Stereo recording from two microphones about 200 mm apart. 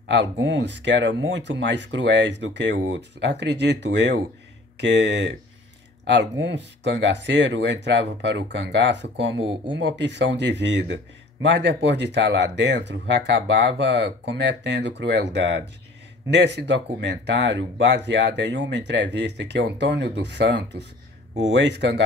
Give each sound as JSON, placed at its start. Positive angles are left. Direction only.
{"t": 0.1, "sound": "speech", "side_deg": -65}
{"t": 6.4, "sound": "speech", "side_deg": -65}